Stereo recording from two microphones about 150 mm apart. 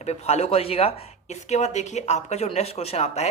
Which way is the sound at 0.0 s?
45° left (ahead or behind).